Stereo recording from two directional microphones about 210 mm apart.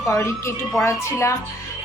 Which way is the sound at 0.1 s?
15° left (ahead or behind).